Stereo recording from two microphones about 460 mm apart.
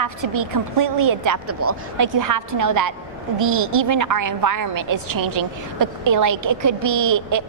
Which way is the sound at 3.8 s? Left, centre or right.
Right.